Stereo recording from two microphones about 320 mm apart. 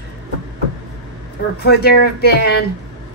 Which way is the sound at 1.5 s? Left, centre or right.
Left.